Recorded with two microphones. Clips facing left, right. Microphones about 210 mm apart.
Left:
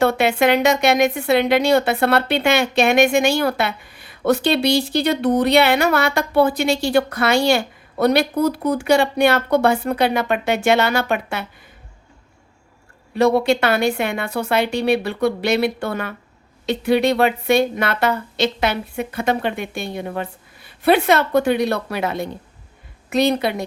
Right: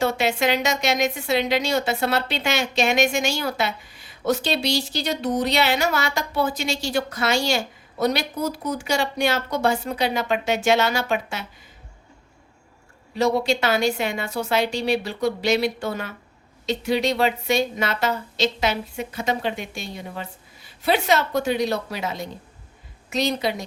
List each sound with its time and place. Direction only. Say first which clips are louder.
0.0 s a woman's voice: left 5 dB; 60° left (ahead or behind)
13.1 s a woman's voice: left 5 dB; 60° left (ahead or behind)